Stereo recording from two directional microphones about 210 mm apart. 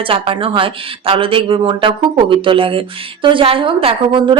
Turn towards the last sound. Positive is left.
turn(degrees=-25)  # may be behind; listen again after turning